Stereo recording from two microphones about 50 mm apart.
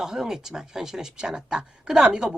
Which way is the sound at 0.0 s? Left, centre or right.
Centre.